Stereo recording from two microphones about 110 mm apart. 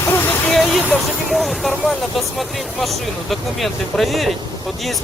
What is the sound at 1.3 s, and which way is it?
Speech, centre (ahead or behind).